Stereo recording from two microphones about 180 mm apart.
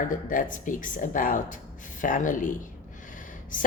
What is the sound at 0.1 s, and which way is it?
Speech, 50° left (ahead or behind).